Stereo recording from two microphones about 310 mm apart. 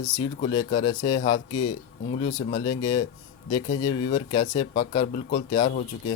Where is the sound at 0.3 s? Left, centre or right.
Left.